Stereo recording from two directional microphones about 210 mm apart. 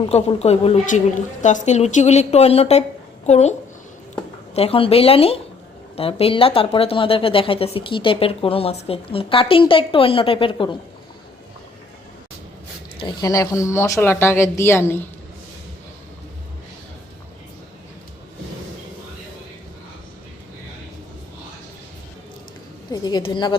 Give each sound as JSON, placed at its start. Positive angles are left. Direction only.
{"t": 0.0, "sound": "a woman's voice", "side_deg": 25}
{"t": 4.5, "sound": "speech", "side_deg": 25}
{"t": 13.0, "sound": "speech", "side_deg": 20}
{"t": 22.9, "sound": "speech", "side_deg": 20}